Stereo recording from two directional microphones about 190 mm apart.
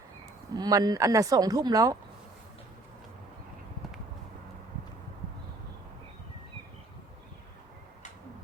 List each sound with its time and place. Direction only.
0.5 s speech: 20° right (ahead or behind)